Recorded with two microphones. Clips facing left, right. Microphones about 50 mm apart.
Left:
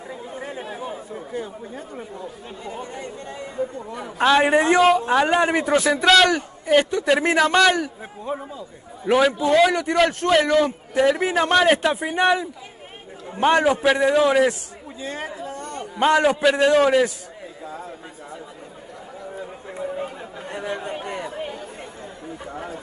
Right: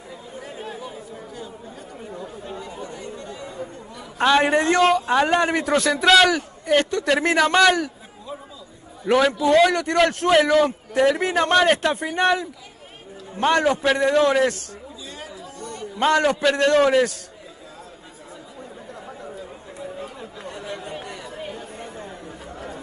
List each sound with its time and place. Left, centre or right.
0.7 s chatter: left
2.6 s chatter: left
4.2 s a man's voice: centre
8.3 s a man's voice: left
9.0 s a man's voice: centre
15.0 s chatter: left
16.0 s a man's voice: centre
19.8 s chatter: left
21.3 s chatter: centre